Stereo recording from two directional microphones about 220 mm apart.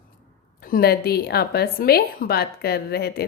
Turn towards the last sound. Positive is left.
turn(degrees=45)  # may be behind; listen again after turning